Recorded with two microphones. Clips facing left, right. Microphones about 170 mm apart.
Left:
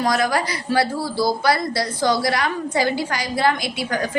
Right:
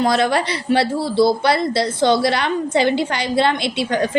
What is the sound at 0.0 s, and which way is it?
A man's voice, 25° right (ahead or behind).